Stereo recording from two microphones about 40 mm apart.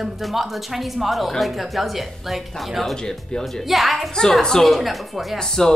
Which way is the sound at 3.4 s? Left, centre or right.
Centre.